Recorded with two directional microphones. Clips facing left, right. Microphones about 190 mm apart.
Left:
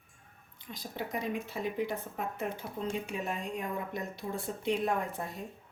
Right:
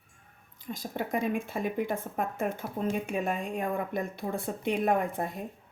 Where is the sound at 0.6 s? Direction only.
45° right (ahead or behind).